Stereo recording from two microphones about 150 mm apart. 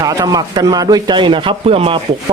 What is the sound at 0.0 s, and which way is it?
Speech, 25° right (ahead or behind).